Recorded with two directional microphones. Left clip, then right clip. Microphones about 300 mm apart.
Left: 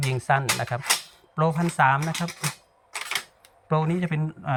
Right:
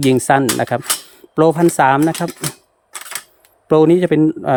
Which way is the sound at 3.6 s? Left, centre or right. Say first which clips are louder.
Right 15 dB; right.